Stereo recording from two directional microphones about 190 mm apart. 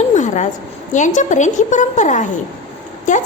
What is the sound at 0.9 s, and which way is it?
A woman's voice, 40° left (ahead or behind).